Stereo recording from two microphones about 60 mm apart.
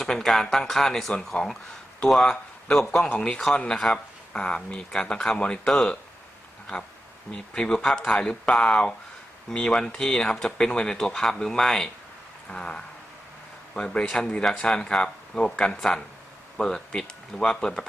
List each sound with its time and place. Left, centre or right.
0.0 s speech: centre
7.3 s speech: centre